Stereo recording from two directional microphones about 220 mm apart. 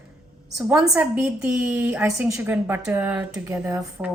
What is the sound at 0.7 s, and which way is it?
A woman's voice, 5° right (ahead or behind).